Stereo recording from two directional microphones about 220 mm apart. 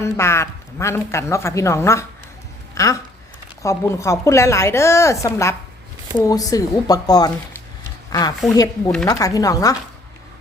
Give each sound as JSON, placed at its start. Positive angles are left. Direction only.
{"t": 0.0, "sound": "a man's voice", "side_deg": 10}
{"t": 8.5, "sound": "a man's voice", "side_deg": 15}